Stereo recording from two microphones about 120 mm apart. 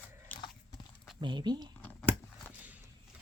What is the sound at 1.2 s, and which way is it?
Speech, 40° right (ahead or behind).